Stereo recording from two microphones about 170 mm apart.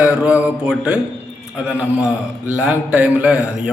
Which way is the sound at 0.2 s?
10° right (ahead or behind).